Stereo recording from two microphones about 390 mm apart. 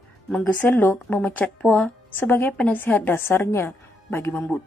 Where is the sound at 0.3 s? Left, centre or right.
Centre.